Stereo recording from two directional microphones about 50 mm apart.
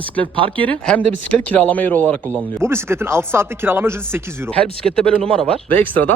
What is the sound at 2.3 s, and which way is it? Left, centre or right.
Speech, right.